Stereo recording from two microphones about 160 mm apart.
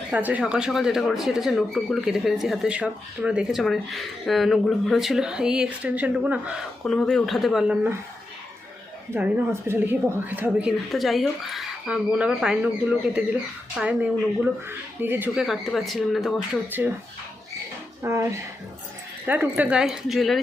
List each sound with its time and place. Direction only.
0.1 s speech: 10° right (ahead or behind)
6.8 s speech: 5° left (ahead or behind)
9.1 s speech: 15° right (ahead or behind)
15.4 s speech: centre (ahead or behind)
18.0 s speech: 20° right (ahead or behind); by 20.4 s centre (ahead or behind)